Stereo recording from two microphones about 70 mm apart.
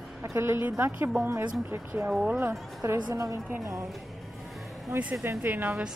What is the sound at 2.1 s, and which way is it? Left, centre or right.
Speech, centre.